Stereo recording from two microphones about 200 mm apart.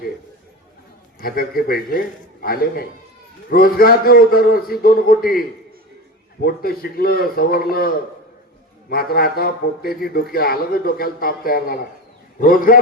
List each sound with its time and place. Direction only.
1.2 s a man's voice: 50° left (ahead or behind)